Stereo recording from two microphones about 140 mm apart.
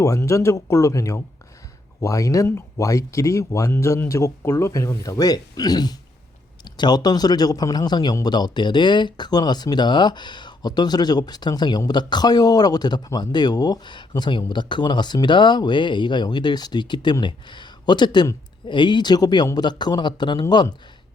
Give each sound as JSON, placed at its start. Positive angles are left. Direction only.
{"t": 0.0, "sound": "a man's voice", "side_deg": 20}